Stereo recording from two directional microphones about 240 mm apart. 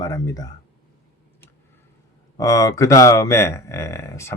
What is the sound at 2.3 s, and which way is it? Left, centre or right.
Speech, centre.